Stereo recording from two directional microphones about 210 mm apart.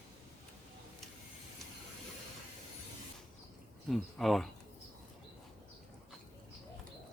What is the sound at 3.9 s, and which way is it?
Speech, centre (ahead or behind).